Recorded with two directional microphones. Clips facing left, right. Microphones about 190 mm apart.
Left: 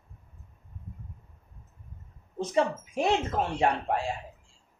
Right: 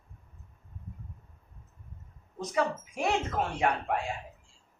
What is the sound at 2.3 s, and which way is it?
A woman's voice, 25° left (ahead or behind).